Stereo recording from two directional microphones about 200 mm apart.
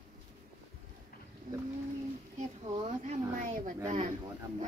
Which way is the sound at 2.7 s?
30° right (ahead or behind).